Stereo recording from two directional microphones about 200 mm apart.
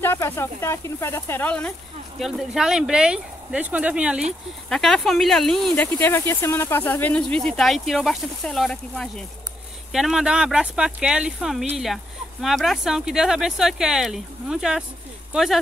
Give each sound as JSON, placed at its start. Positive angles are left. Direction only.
{"t": 0.0, "sound": "speech", "side_deg": 10}